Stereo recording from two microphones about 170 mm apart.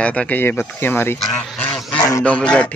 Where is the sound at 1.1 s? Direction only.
5° left (ahead or behind).